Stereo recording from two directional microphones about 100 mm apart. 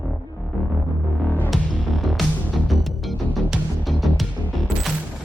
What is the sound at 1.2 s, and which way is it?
Music, 15° left (ahead or behind).